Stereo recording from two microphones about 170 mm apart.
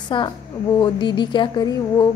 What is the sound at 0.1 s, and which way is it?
Speech, 30° left (ahead or behind).